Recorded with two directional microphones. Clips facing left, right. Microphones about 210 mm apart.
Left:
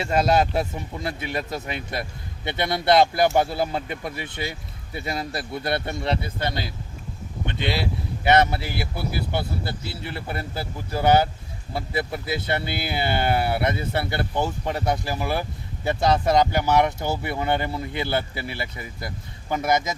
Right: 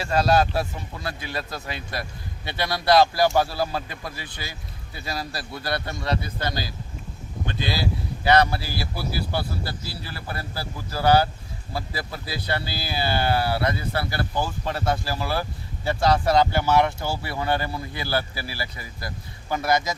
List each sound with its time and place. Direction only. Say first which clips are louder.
0.0 s speech: even; 20° left (ahead or behind)